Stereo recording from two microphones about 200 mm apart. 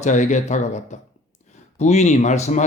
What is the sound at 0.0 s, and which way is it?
A man's voice, 40° left (ahead or behind).